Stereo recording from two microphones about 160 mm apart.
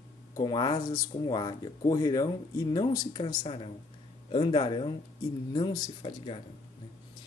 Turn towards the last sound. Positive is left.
turn(degrees=35)  # may be behind; listen again after turning